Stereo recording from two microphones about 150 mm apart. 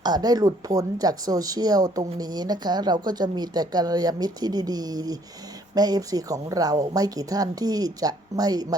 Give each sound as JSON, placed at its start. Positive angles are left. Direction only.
{"t": 0.0, "sound": "speech", "side_deg": -25}